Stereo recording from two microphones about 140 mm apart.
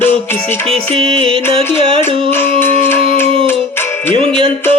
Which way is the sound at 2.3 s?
15° left (ahead or behind).